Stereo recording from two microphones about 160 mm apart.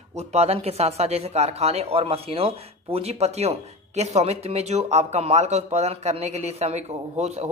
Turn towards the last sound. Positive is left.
turn(degrees=-45)  # may be behind; listen again after turning